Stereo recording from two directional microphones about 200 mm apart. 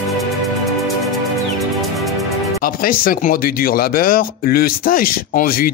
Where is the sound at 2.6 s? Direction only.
45° left (ahead or behind).